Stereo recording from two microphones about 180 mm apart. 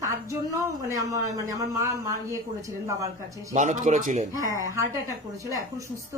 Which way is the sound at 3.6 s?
45° right (ahead or behind).